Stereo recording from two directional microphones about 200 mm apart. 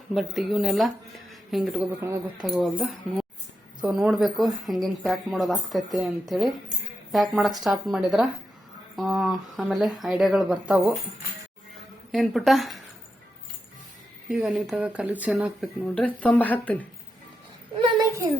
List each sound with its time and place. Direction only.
0.1 s speech: centre (ahead or behind)
12.1 s speech: centre (ahead or behind)
14.3 s speech: centre (ahead or behind)
16.0 s speech: 5° left (ahead or behind)
17.7 s a sound: 25° right (ahead or behind)